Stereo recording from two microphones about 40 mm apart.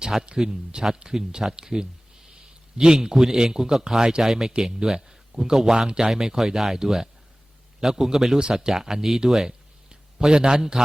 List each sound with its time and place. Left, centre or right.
0.0 s a man's voice: centre
8.4 s a man's voice: centre